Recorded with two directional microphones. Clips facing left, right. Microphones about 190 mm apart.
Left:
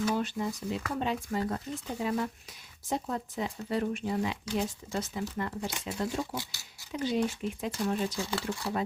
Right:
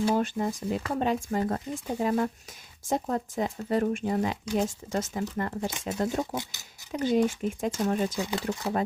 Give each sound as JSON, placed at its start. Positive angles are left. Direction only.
{"t": 0.2, "sound": "speech", "side_deg": -50}
{"t": 6.3, "sound": "speech", "side_deg": -20}
{"t": 6.9, "sound": "speech", "side_deg": -50}
{"t": 8.2, "sound": "speech", "side_deg": -15}